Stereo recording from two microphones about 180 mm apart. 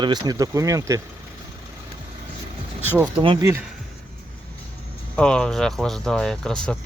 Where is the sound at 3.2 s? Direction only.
30° right (ahead or behind).